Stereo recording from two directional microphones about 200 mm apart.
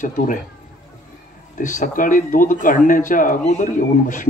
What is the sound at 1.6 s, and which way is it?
Speech, 40° left (ahead or behind).